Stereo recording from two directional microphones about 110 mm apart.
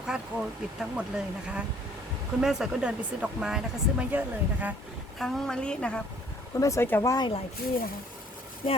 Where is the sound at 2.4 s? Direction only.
5° right (ahead or behind).